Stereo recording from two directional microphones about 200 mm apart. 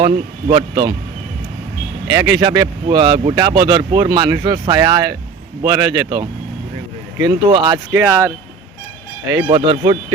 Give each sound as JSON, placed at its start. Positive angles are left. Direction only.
{"t": 0.0, "sound": "speech", "side_deg": -25}
{"t": 2.3, "sound": "speech", "side_deg": -20}
{"t": 9.3, "sound": "speech", "side_deg": -20}